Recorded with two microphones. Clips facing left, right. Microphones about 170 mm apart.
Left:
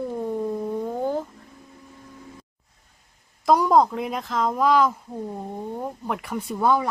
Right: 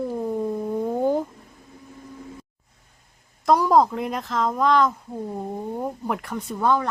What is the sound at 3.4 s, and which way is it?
Speech, centre (ahead or behind).